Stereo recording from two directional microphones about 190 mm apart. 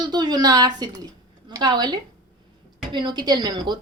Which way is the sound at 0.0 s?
20° right (ahead or behind).